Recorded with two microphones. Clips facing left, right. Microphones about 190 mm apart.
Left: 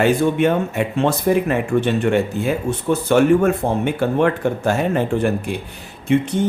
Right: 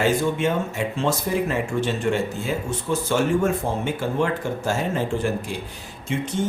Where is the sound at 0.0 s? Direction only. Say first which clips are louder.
Left 5 dB; 60° left (ahead or behind).